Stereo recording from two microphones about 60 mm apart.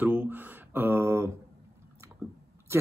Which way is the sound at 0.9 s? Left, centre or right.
Right.